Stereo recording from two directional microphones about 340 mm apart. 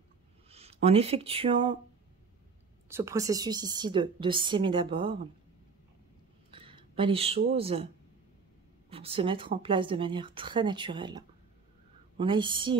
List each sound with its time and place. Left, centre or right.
0.5 s speech: centre
2.9 s a woman's voice: centre
6.5 s speech: centre
8.9 s a woman's voice: centre